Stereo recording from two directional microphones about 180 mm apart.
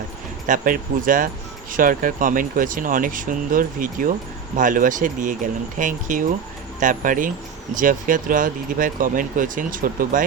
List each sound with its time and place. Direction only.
0.4 s speech: 50° right (ahead or behind)